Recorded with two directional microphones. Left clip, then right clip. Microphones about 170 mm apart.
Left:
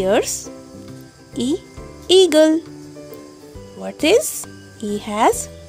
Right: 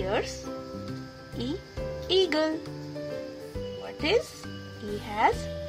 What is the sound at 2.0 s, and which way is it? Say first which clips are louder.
Speech: left 13 dB; 50° left (ahead or behind).